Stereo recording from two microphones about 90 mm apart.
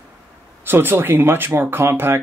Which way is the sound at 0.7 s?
25° right (ahead or behind).